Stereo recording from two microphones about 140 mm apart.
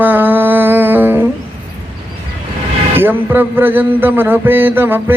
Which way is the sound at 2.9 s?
15° right (ahead or behind).